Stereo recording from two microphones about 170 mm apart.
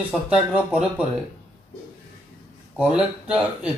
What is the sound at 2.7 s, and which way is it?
Speech, 5° right (ahead or behind).